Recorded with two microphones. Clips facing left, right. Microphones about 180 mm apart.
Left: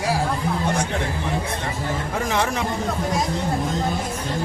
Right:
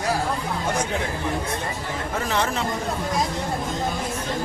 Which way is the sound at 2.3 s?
15° left (ahead or behind).